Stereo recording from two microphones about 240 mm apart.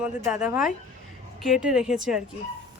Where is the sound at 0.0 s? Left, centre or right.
Centre.